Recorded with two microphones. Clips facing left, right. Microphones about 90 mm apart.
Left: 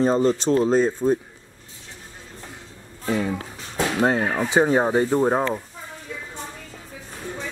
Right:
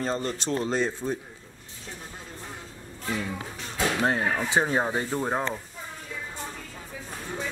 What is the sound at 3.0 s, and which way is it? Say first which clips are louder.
Speech: left 7 dB; 40° left (ahead or behind).